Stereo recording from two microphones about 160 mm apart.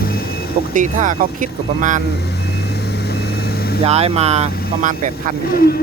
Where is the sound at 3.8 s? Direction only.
40° right (ahead or behind).